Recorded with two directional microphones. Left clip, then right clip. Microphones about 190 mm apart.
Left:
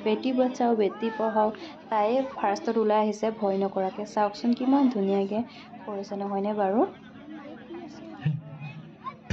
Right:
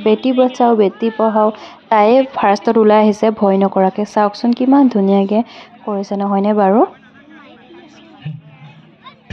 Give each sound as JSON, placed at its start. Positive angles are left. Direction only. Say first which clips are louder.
{"t": 0.0, "sound": "a woman's voice", "louder": "right 13 dB", "side_deg": -40}